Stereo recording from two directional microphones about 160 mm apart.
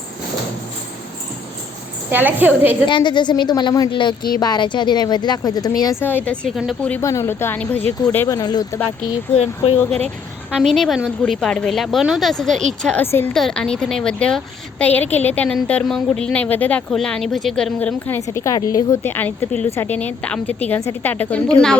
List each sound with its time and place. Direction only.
2.0 s a woman's voice: 10° right (ahead or behind)
2.8 s a woman's voice: 30° left (ahead or behind); by 6.9 s centre (ahead or behind)
7.0 s speech: 20° left (ahead or behind)
8.3 s speech: 25° left (ahead or behind)
9.0 s speech: 40° left (ahead or behind)
10.6 s a woman's voice: centre (ahead or behind)